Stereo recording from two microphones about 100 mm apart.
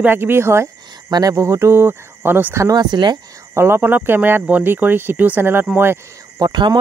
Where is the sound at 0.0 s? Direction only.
20° right (ahead or behind).